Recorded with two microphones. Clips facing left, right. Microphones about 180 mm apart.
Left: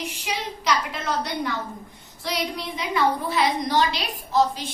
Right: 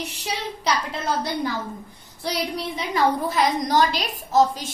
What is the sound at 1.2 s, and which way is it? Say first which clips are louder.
Speech: right 2 dB; 30° right (ahead or behind).